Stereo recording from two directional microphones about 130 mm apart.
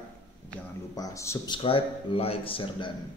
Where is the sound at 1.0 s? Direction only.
20° left (ahead or behind).